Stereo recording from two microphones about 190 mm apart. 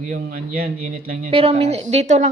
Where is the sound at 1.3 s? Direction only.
30° right (ahead or behind).